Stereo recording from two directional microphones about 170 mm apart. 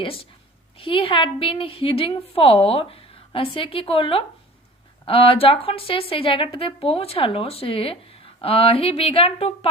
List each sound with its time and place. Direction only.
0.8 s a woman's voice: 30° left (ahead or behind)